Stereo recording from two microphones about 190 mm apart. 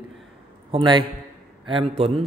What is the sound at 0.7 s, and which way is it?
Speech, 25° right (ahead or behind).